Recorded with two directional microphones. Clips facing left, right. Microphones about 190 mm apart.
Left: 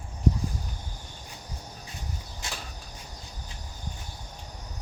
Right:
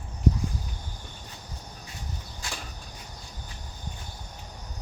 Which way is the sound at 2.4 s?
20° left (ahead or behind).